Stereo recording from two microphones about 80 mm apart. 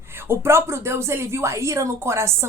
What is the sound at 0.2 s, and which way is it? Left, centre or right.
Speech, right.